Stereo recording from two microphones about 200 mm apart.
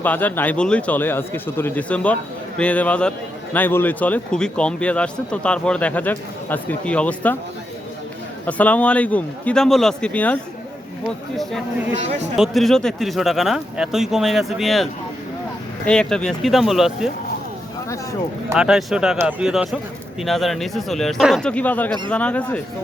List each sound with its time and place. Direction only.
0.0 s a man's voice: 10° left (ahead or behind)
8.4 s a man's voice: 5° left (ahead or behind)
12.0 s speech: 35° right (ahead or behind)
12.4 s speech: centre (ahead or behind)
15.9 s speech: 5° left (ahead or behind)
18.5 s a man's voice: 5° right (ahead or behind)